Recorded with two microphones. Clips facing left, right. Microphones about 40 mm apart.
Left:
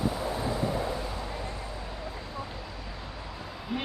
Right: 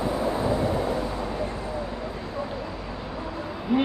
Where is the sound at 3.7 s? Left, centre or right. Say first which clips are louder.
Right 11 dB; centre.